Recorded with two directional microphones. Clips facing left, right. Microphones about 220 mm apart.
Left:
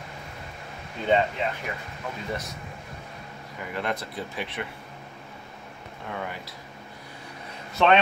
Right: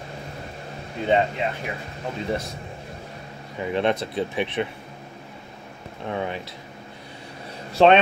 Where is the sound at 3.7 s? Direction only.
20° right (ahead or behind).